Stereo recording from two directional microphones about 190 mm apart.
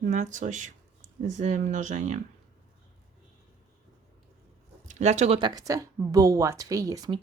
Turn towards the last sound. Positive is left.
turn(degrees=-20)  # may be behind; listen again after turning